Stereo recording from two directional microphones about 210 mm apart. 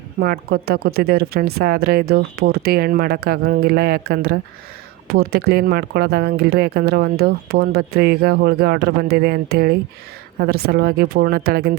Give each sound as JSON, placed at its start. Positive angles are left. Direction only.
{"t": 0.2, "sound": "speech", "side_deg": -45}